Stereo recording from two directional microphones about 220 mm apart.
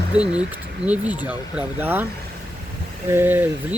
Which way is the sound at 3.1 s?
10° right (ahead or behind).